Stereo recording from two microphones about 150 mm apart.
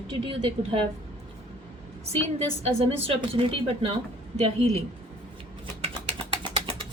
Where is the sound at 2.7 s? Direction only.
40° right (ahead or behind).